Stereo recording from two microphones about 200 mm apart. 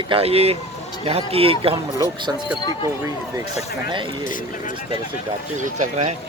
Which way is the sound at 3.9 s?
25° right (ahead or behind).